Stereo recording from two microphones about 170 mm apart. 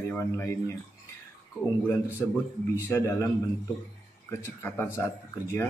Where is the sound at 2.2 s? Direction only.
15° left (ahead or behind).